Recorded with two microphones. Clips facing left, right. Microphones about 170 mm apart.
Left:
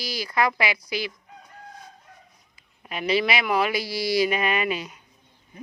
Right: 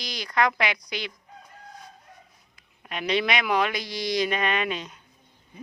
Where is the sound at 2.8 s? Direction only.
5° left (ahead or behind).